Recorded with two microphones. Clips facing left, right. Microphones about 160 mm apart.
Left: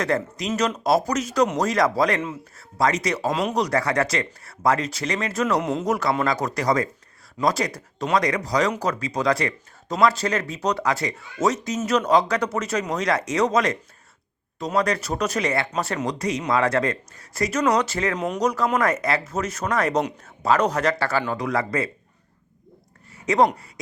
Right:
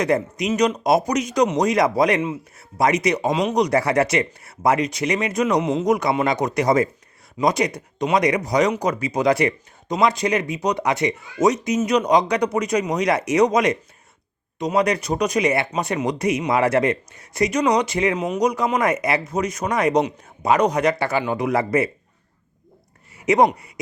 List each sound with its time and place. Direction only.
0.1 s speech: 20° right (ahead or behind)
3.2 s speech: centre (ahead or behind)
3.7 s speech: 25° right (ahead or behind)
5.5 s speech: centre (ahead or behind)
5.8 s speech: 15° right (ahead or behind)
7.4 s speech: 10° right (ahead or behind)
8.1 s speech: 20° right (ahead or behind)
14.8 s speech: 15° right (ahead or behind)
19.9 s speech: centre (ahead or behind)
20.2 s speech: 15° right (ahead or behind)
23.2 s speech: 20° right (ahead or behind)